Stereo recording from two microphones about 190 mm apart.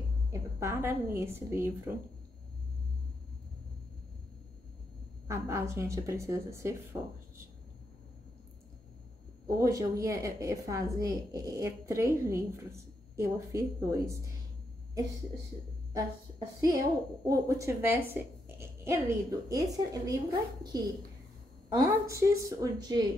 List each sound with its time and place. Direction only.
0.3 s a woman's voice: 15° right (ahead or behind)
5.3 s a woman's voice: 15° right (ahead or behind)
9.5 s a woman's voice: 15° right (ahead or behind)
16.3 s a woman's voice: 20° right (ahead or behind)